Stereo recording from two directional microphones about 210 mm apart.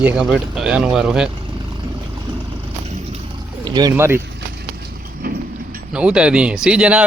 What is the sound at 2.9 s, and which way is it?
Vehicle, 30° right (ahead or behind).